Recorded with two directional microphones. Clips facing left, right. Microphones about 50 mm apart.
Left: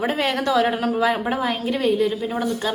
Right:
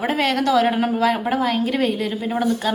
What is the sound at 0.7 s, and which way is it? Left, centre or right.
Speech, centre.